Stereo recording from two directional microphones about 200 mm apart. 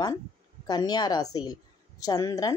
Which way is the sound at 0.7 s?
20° left (ahead or behind).